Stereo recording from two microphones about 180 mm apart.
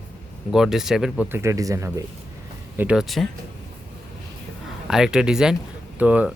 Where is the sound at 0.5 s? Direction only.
Centre (ahead or behind); by 2.0 s 20° right (ahead or behind).